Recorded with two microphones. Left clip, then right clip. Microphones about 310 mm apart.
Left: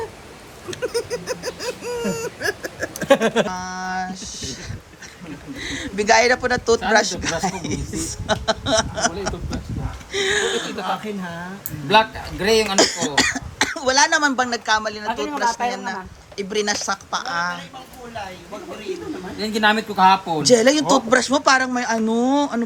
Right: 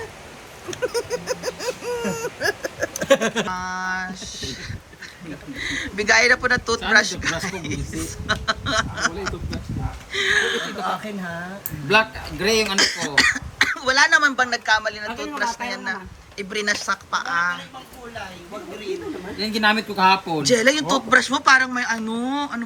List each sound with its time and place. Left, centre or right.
0.7 s a sound: centre
3.1 s speech: centre
3.4 s speech: centre
5.5 s speech: centre
10.1 s a sound: centre
11.9 s speech: centre
19.4 s speech: centre